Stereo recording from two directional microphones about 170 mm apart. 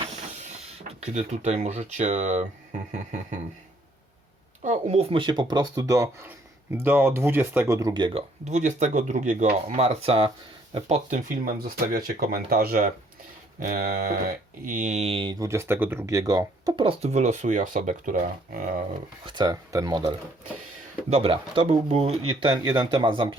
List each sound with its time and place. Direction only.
0.3 s speech: 40° right (ahead or behind)
4.6 s speech: 40° right (ahead or behind)
8.4 s speech: 45° right (ahead or behind); by 14.2 s 60° right (ahead or behind)
14.6 s speech: 50° right (ahead or behind)
19.2 s speech: 25° right (ahead or behind)
21.1 s speech: 35° right (ahead or behind)